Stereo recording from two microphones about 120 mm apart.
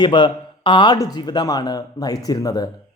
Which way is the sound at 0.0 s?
40° left (ahead or behind).